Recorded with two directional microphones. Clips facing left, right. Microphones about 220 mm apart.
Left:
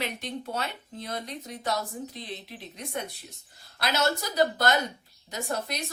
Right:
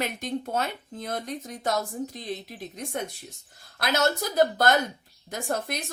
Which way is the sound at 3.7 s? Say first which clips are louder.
Right 2 dB; 50° right (ahead or behind).